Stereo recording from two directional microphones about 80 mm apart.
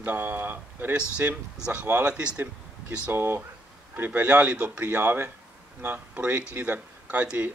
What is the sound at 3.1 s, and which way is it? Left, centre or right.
Speech, right.